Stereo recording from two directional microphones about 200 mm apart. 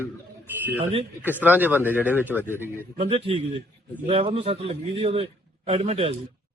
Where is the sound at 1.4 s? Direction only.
10° right (ahead or behind).